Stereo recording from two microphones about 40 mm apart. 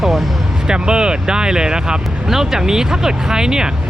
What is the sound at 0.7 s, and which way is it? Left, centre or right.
Speech, right.